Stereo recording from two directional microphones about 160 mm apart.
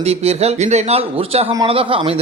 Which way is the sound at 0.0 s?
40° right (ahead or behind).